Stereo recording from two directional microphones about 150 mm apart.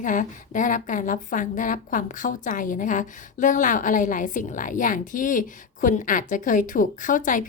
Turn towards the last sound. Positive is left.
turn(degrees=60)  # may be behind; listen again after turning